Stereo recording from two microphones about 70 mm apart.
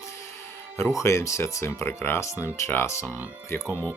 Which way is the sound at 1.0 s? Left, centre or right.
Left.